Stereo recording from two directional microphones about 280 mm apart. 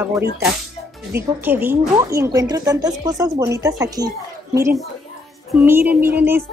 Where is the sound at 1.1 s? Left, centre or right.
Centre.